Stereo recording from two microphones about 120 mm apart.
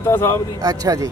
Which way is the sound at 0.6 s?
30° right (ahead or behind).